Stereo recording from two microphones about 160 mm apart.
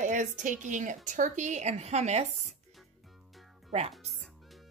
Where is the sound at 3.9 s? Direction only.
Centre (ahead or behind).